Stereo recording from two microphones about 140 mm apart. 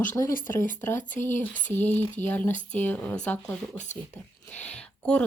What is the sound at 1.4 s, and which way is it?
Speech, 15° left (ahead or behind).